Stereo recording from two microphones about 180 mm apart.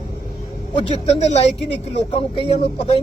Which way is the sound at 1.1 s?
35° left (ahead or behind).